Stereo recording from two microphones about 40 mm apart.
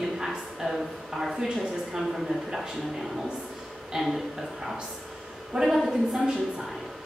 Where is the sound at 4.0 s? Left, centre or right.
Centre.